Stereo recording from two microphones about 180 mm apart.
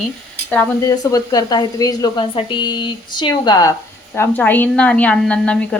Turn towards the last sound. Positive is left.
turn(degrees=5)  # may be behind; listen again after turning